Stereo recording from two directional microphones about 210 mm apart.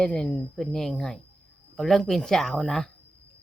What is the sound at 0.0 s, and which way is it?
Speech, 5° left (ahead or behind).